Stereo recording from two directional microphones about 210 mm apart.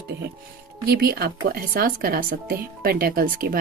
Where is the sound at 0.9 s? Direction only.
45° right (ahead or behind).